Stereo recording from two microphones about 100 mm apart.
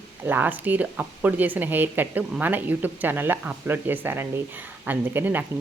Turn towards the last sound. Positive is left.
turn(degrees=-20)  # may be behind; listen again after turning